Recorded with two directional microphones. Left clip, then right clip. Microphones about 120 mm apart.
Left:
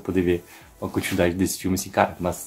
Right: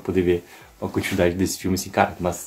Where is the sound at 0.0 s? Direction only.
30° left (ahead or behind).